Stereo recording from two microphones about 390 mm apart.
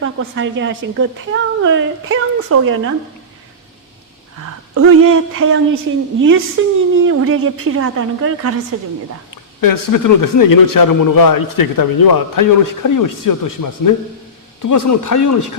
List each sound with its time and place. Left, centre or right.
0.0 s a woman's voice: right
4.7 s a woman's voice: right
9.3 s a man's voice: left